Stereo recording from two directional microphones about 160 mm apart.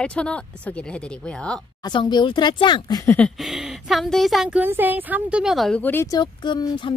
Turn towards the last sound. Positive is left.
turn(degrees=25)  # may be behind; listen again after turning